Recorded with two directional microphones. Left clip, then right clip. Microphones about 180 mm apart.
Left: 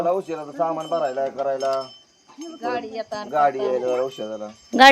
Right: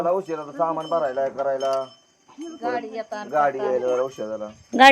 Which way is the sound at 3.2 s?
15° right (ahead or behind).